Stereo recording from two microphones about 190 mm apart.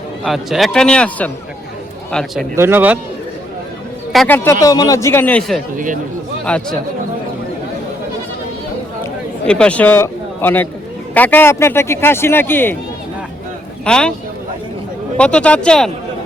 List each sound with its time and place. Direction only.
0.3 s a man's voice: centre (ahead or behind)
2.6 s speech: 10° right (ahead or behind)
4.1 s a man's voice: centre (ahead or behind)
4.6 s speech: 20° left (ahead or behind); by 5.6 s centre (ahead or behind)
5.7 s speech: 45° right (ahead or behind)
6.4 s speech: 5° left (ahead or behind)
9.5 s speech: 5° left (ahead or behind)
13.8 s a man's voice: 5° left (ahead or behind)
15.2 s a man's voice: 5° left (ahead or behind)